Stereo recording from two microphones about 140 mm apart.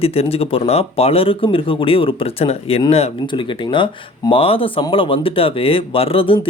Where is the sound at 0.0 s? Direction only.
45° left (ahead or behind).